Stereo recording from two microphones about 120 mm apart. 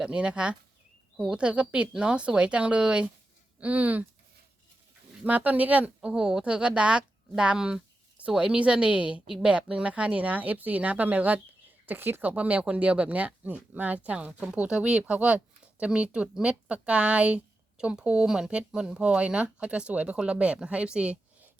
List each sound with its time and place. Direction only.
0.0 s speech: 10° right (ahead or behind)
5.2 s speech: 15° right (ahead or behind)